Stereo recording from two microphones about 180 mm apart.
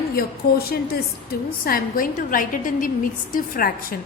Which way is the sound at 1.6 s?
55° left (ahead or behind).